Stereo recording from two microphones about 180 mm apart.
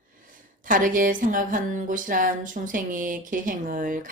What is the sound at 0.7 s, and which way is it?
Speech, 50° right (ahead or behind).